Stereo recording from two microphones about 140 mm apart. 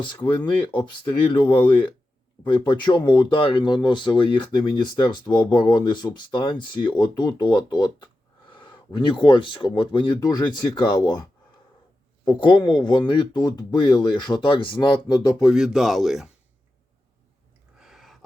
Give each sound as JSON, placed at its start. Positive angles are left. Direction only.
{"t": 0.4, "sound": "speech", "side_deg": 35}
{"t": 12.3, "sound": "speech", "side_deg": 35}
{"t": 15.5, "sound": "speech", "side_deg": 0}
{"t": 17.7, "sound": "a sound", "side_deg": 0}